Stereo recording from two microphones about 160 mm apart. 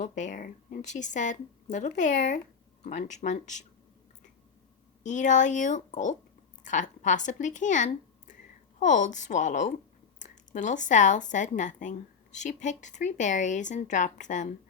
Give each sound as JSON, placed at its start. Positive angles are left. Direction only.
{"t": 0.0, "sound": "speech", "side_deg": 50}
{"t": 5.0, "sound": "speech", "side_deg": 50}